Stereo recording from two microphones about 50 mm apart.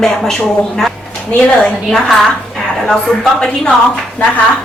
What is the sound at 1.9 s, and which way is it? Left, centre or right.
A woman's voice, centre.